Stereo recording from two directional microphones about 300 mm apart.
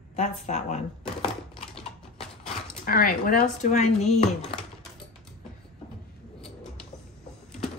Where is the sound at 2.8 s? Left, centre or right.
Left.